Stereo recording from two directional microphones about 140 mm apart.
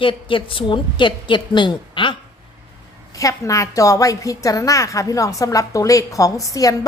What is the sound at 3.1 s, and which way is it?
A woman's voice, 25° left (ahead or behind).